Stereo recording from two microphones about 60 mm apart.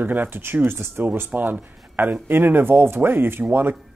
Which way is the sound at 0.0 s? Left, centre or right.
Right.